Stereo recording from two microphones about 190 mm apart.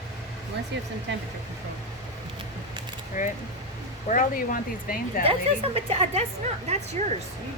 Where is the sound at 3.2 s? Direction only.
40° left (ahead or behind).